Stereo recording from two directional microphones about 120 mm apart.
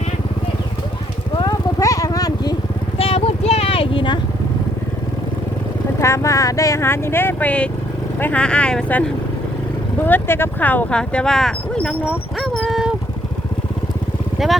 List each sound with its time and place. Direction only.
1.4 s vehicle: 30° left (ahead or behind)
3.0 s vehicle: 55° left (ahead or behind)
6.0 s speech: 25° left (ahead or behind)
10.1 s speech: 20° left (ahead or behind)
12.4 s dog: centre (ahead or behind)
14.3 s vehicle: centre (ahead or behind)